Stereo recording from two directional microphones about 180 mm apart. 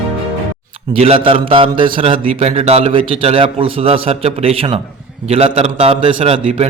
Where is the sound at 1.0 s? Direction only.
30° right (ahead or behind).